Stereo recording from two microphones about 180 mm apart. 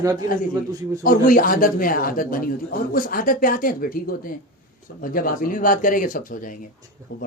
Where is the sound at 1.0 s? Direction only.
50° left (ahead or behind).